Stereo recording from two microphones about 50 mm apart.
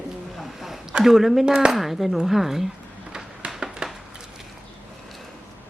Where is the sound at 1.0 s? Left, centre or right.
Centre.